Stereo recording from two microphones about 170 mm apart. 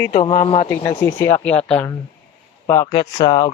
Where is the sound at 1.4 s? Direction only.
5° left (ahead or behind).